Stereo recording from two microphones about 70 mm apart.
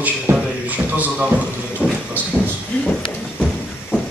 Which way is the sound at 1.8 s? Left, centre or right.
Centre.